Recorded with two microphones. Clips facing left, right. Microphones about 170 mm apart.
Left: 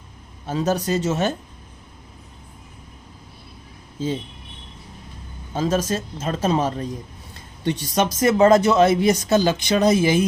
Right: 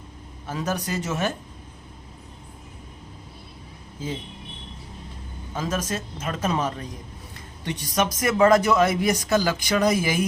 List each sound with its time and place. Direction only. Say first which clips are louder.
0.4 s speech: left 6 dB; 30° left (ahead or behind)
5.5 s speech: left 6 dB; 30° left (ahead or behind)